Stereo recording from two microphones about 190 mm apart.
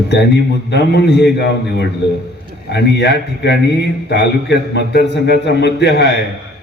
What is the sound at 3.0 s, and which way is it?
A man's voice, 60° left (ahead or behind).